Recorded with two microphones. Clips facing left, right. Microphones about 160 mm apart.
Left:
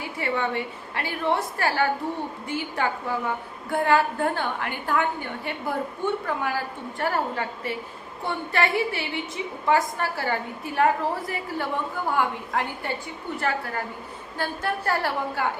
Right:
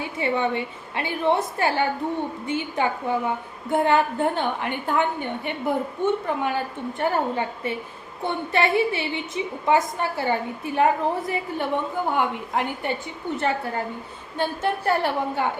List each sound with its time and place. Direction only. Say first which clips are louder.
0.0 s a woman's voice: right 3 dB; 20° right (ahead or behind)